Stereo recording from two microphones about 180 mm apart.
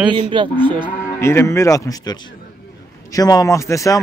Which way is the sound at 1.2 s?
15° left (ahead or behind).